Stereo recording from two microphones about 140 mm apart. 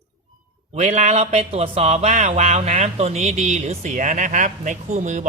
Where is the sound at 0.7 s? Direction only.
55° right (ahead or behind).